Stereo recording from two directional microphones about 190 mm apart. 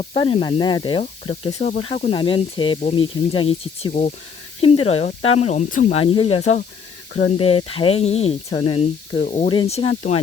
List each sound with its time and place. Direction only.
0.0 s speech: 30° left (ahead or behind)
6.1 s speech: 30° left (ahead or behind)